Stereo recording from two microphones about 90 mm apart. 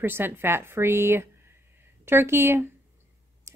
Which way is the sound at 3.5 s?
30° right (ahead or behind).